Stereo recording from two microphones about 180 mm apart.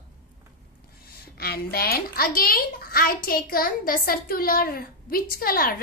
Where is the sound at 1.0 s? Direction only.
60° left (ahead or behind).